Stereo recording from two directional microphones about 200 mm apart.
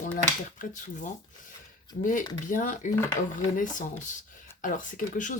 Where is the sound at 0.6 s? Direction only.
40° left (ahead or behind).